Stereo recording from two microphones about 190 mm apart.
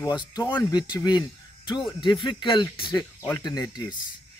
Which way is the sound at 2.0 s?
25° left (ahead or behind).